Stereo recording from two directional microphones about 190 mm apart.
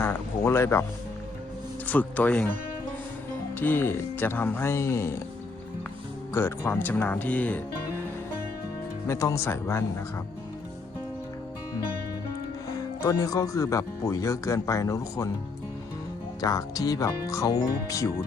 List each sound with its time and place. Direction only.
0.0 s a sound: 10° left (ahead or behind)
1.9 s speech: 10° left (ahead or behind)
6.3 s speech: 15° left (ahead or behind)
9.0 s speech: 15° left (ahead or behind)
13.0 s speech: 15° left (ahead or behind)
16.4 s speech: 20° left (ahead or behind)